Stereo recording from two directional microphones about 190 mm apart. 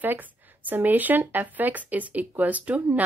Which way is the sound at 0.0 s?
10° right (ahead or behind).